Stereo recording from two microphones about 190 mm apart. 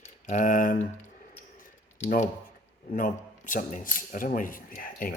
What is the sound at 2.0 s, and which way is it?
Speech, 40° left (ahead or behind).